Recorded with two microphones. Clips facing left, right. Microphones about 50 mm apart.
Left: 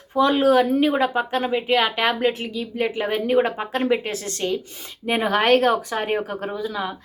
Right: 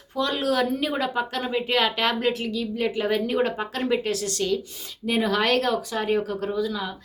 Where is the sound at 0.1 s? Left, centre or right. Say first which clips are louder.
Left 8 dB; left.